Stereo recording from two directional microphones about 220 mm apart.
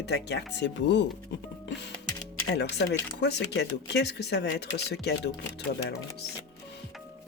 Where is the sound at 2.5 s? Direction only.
50° left (ahead or behind).